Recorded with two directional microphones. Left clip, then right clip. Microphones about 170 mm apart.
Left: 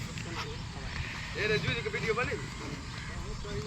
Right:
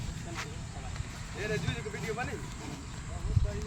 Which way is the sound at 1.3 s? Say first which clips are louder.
Left 5 dB; 90° right.